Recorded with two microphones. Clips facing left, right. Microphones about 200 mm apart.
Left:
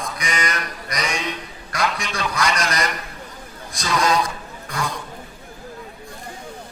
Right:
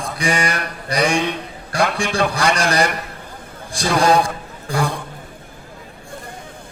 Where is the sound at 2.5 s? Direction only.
30° right (ahead or behind).